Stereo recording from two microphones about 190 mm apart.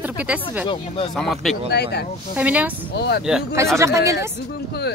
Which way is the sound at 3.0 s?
60° left (ahead or behind).